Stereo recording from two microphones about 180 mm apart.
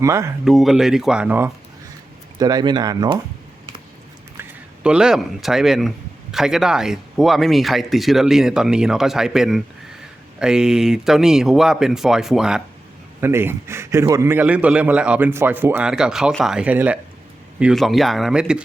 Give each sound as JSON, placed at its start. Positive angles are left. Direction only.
{"t": 0.0, "sound": "a man's voice", "side_deg": -15}
{"t": 0.4, "sound": "speech", "side_deg": 0}
{"t": 2.4, "sound": "speech", "side_deg": -20}
{"t": 4.4, "sound": "a man's voice", "side_deg": -5}